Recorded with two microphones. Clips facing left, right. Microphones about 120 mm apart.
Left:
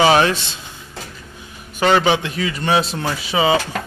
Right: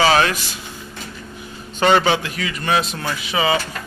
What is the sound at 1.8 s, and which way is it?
Speech, 5° left (ahead or behind).